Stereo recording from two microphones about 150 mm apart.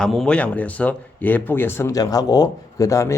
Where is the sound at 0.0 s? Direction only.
5° left (ahead or behind).